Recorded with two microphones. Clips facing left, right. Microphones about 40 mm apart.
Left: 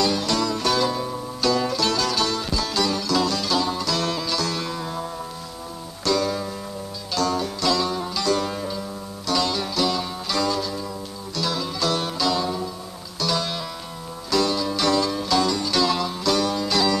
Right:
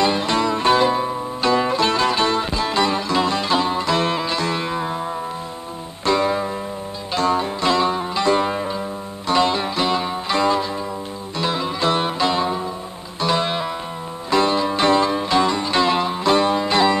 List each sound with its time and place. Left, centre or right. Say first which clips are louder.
0.0 s music: right 4 dB; right